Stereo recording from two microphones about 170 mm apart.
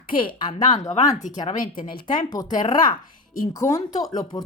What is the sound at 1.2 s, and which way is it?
Speech, 50° left (ahead or behind).